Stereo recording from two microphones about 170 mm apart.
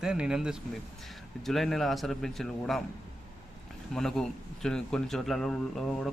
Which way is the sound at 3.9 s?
5° left (ahead or behind).